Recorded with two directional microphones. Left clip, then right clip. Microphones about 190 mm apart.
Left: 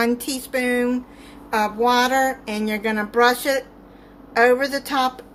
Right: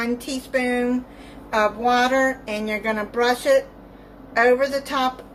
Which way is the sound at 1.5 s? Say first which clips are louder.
Even; 55° left (ahead or behind).